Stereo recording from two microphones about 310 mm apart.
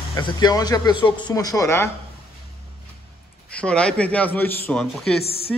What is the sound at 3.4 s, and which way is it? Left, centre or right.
A man's voice, centre.